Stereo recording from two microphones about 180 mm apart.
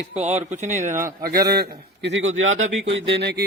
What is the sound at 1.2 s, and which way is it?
Speech, 55° right (ahead or behind).